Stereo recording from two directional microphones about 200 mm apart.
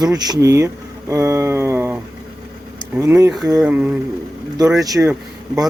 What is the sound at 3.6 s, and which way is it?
Speech, 5° right (ahead or behind).